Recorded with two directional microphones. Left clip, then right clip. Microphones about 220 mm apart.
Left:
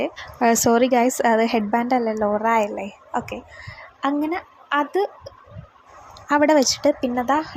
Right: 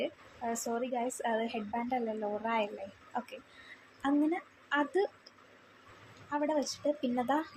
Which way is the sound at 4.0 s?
20° left (ahead or behind).